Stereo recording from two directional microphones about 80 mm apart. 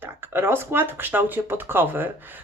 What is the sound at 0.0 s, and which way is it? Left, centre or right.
Speech, right.